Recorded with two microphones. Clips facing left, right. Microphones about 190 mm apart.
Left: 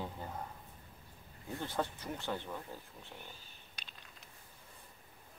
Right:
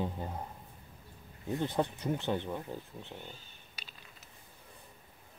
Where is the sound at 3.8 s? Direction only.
5° right (ahead or behind).